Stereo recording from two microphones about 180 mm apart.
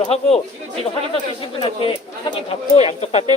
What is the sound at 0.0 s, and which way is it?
Speech, 35° left (ahead or behind).